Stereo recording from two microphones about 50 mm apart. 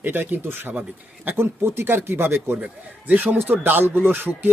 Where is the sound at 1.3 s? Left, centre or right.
Right.